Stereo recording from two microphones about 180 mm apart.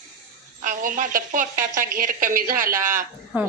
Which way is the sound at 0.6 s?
45° right (ahead or behind).